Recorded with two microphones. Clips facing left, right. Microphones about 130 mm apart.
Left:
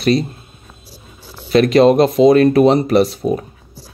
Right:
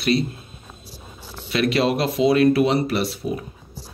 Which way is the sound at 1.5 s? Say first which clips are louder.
Left 10 dB; 40° left (ahead or behind).